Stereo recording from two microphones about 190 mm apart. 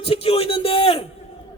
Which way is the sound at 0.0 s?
30° left (ahead or behind).